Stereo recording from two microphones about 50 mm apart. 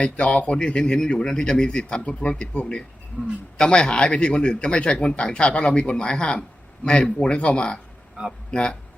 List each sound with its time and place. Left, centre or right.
0.0 s speech: left